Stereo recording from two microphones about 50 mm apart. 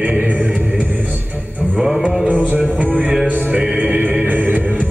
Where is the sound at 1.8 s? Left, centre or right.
Centre.